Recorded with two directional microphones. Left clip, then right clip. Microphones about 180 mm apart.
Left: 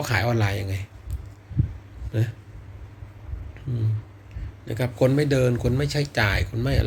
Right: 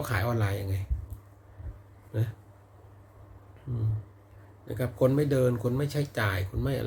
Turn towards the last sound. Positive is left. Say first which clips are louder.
# left 6 dB
turn(degrees=-15)  # may be behind; listen again after turning